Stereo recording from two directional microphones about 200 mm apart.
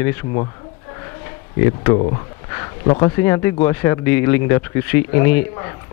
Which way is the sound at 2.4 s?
20° left (ahead or behind).